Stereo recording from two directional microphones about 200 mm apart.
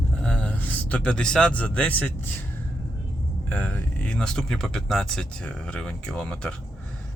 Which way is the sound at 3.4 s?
10° left (ahead or behind).